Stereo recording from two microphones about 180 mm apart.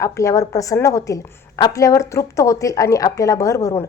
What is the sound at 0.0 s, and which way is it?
A woman's voice, 15° left (ahead or behind).